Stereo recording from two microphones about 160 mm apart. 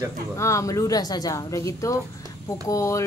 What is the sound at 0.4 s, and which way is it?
A woman's voice, 20° left (ahead or behind).